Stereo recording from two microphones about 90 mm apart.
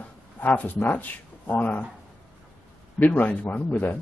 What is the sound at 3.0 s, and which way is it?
Speech, 15° left (ahead or behind).